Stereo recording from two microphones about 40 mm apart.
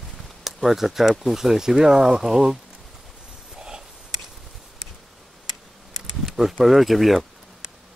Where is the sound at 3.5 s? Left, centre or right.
Centre.